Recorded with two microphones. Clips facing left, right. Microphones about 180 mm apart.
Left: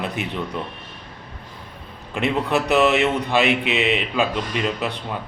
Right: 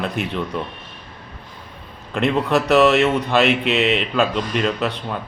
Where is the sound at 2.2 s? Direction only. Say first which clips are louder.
Right 3 dB; 15° left (ahead or behind).